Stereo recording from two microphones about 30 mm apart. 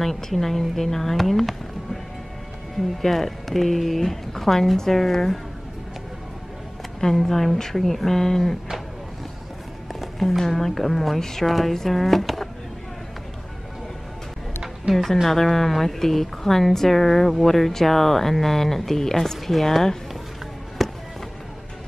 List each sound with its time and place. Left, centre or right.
0.0 s speech: centre
3.0 s speech: centre
7.2 s speech: centre
8.1 s speech: centre
9.9 s music: centre
10.5 s speech: centre
11.4 s speech: centre
14.9 s speech: right
15.2 s speech: centre
20.8 s music: centre